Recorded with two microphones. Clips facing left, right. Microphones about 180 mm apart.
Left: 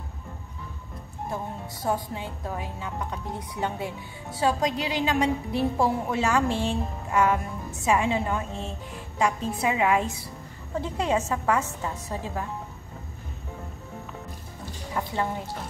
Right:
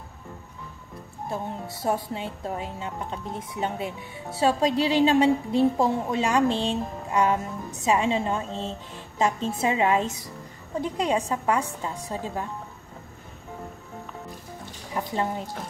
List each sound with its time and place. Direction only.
1.3 s a woman's voice: 25° right (ahead or behind)
15.0 s speech: 20° right (ahead or behind)